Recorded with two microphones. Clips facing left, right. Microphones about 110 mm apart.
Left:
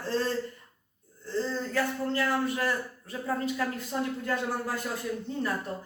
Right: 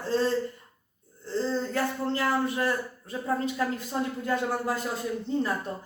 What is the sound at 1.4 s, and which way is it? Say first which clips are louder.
Speech: right 2 dB; 25° right (ahead or behind).